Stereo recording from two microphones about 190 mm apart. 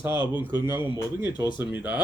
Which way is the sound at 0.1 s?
25° left (ahead or behind).